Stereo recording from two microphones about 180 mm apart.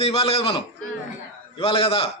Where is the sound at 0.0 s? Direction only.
35° left (ahead or behind).